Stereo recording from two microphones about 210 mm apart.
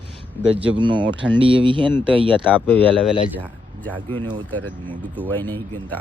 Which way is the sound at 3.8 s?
10° left (ahead or behind).